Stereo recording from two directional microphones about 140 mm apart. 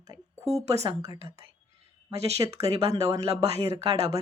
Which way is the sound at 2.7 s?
50° right (ahead or behind).